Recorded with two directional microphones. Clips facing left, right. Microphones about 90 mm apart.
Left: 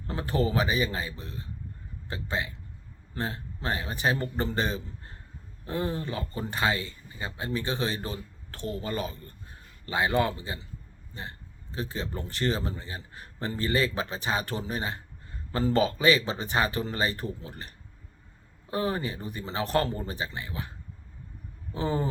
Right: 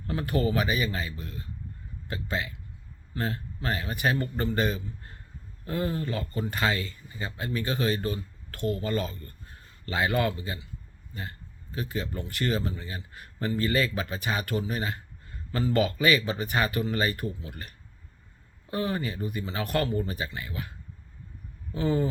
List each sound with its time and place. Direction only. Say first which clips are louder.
0.1 s speech: right 1 dB; 30° left (ahead or behind)
21.7 s speech: right 2 dB; 30° left (ahead or behind)